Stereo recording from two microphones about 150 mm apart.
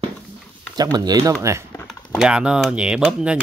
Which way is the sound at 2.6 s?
5° right (ahead or behind).